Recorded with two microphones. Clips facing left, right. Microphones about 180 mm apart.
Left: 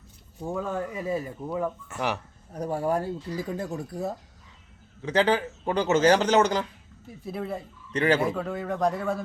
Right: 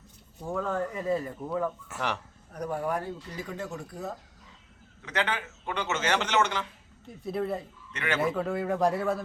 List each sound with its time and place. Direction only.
0.4 s speech: 15° left (ahead or behind)
2.5 s a man's voice: 30° left (ahead or behind)
5.0 s a man's voice: 30° left (ahead or behind)
7.1 s a man's voice: centre (ahead or behind)
7.9 s a man's voice: 35° left (ahead or behind)
8.2 s a man's voice: centre (ahead or behind)